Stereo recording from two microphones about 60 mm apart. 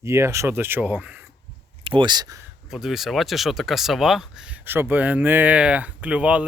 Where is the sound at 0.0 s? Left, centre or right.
Right.